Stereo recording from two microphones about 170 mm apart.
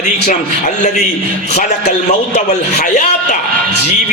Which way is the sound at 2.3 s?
45° left (ahead or behind).